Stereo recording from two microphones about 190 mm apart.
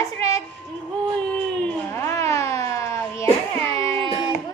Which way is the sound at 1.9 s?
15° left (ahead or behind).